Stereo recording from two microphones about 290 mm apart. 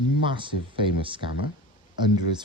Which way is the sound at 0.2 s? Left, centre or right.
Centre.